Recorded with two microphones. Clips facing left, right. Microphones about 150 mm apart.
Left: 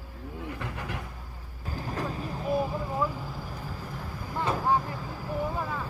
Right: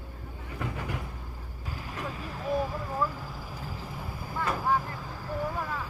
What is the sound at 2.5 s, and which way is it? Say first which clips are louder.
Vehicle: left 1 dB; 5° left (ahead or behind).